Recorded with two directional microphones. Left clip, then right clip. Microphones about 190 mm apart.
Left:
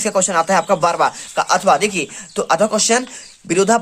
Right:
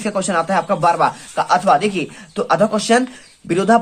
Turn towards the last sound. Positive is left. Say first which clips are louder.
# even
turn(degrees=30)  # may be behind; listen again after turning